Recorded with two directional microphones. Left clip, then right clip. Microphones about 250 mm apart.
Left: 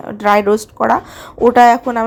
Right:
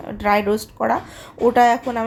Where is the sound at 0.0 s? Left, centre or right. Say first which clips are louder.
Left 6 dB; left.